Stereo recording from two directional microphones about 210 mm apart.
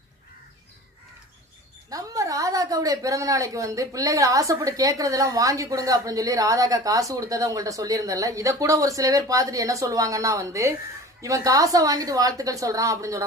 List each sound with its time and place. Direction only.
1.9 s a woman's voice: 15° right (ahead or behind)